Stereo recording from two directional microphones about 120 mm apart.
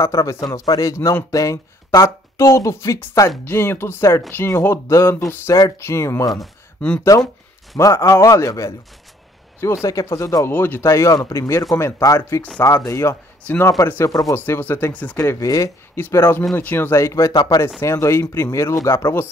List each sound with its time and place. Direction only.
0.0 s speech: 25° left (ahead or behind)
6.4 s a sound: 5° left (ahead or behind)
7.0 s speech: 30° left (ahead or behind)
17.7 s speech: 25° left (ahead or behind)